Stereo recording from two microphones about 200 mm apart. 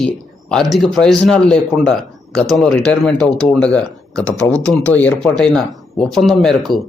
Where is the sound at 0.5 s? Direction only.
Centre (ahead or behind).